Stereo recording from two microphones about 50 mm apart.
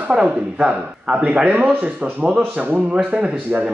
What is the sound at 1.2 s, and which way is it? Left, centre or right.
Speech, right.